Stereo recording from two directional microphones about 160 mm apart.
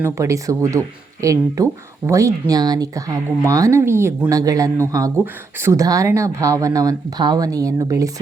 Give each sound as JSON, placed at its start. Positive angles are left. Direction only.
{"t": 0.0, "sound": "speech", "side_deg": -20}